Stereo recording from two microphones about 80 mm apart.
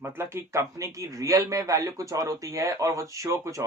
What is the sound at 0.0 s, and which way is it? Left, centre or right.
Speech, right.